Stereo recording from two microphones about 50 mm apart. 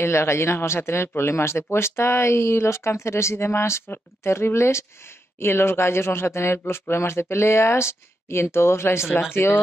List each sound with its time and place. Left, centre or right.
0.0 s speech: left
1.3 s speech: left